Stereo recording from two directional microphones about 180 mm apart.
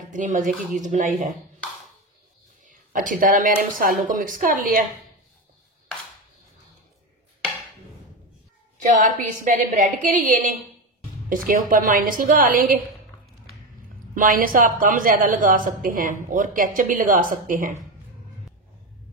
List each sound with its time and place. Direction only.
0.1 s speech: 45° right (ahead or behind)
2.6 s speech: 45° right (ahead or behind)
8.8 s speech: 45° right (ahead or behind)
14.1 s speech: 50° right (ahead or behind)